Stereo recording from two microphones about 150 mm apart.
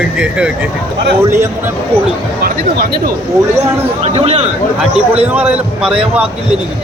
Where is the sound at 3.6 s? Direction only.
40° right (ahead or behind).